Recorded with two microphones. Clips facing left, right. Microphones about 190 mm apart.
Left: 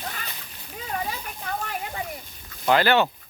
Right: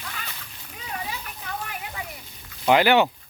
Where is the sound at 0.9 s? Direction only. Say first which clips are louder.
Left 3 dB; 45° left (ahead or behind).